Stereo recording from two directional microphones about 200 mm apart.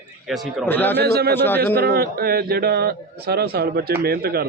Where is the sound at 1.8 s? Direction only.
50° right (ahead or behind).